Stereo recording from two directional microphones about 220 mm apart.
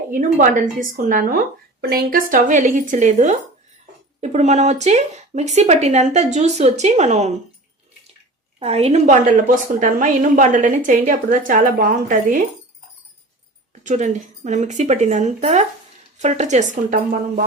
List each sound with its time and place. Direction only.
0.1 s speech: 35° right (ahead or behind)
8.5 s a woman's voice: 30° right (ahead or behind)
13.8 s speech: 30° right (ahead or behind)